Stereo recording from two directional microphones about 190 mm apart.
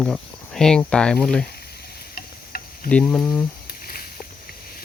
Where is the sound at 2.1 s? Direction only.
50° left (ahead or behind).